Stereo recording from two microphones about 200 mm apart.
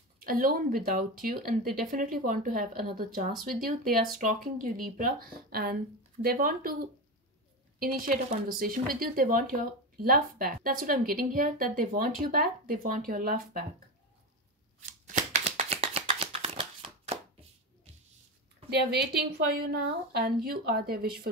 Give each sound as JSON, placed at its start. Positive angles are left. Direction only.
{"t": 0.2, "sound": "a woman's voice", "side_deg": -45}
{"t": 15.0, "sound": "shuffling cards", "side_deg": -40}
{"t": 18.7, "sound": "a woman's voice", "side_deg": -55}